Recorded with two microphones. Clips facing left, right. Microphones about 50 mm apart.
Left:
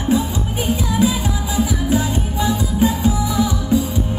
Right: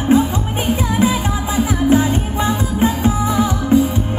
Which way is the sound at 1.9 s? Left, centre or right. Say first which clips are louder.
Right 5 dB; right.